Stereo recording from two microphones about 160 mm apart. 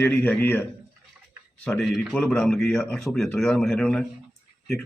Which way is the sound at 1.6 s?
Centre (ahead or behind).